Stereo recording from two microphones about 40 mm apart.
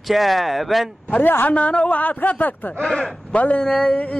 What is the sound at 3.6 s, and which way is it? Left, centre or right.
Speech, centre.